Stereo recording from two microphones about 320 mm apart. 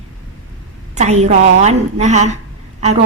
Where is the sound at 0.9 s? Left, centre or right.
Right.